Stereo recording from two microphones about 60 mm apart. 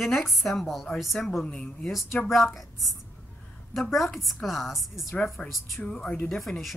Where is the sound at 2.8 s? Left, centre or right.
Centre.